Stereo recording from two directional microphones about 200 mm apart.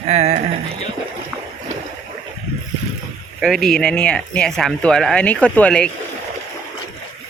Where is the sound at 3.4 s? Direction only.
Centre (ahead or behind).